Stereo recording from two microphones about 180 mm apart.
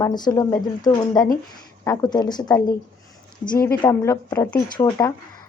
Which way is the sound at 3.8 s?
15° left (ahead or behind).